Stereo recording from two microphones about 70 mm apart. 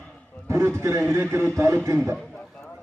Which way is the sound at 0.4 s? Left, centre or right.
Right.